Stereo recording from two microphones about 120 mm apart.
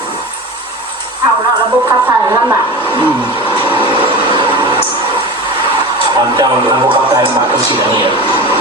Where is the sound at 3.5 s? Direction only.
45° right (ahead or behind).